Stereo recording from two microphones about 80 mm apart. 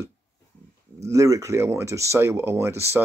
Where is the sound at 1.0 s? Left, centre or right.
Right.